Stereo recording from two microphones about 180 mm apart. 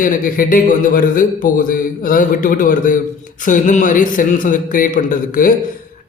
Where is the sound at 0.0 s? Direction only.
50° left (ahead or behind).